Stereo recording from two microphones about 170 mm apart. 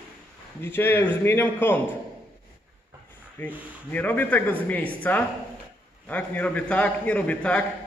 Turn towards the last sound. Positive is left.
turn(degrees=10)  # may be behind; listen again after turning